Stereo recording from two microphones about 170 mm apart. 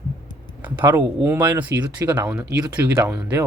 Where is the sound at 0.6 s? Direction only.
10° right (ahead or behind).